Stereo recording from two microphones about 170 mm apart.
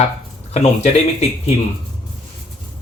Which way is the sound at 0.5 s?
40° left (ahead or behind).